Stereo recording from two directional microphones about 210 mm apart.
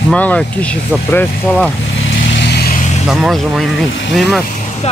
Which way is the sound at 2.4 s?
50° left (ahead or behind).